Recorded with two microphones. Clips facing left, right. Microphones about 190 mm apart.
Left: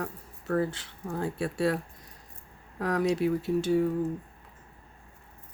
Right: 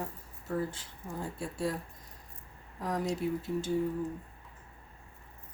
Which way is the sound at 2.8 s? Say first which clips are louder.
Left 6 dB; 70° left (ahead or behind).